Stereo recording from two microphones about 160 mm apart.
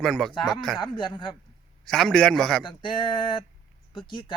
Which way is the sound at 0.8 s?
30° left (ahead or behind).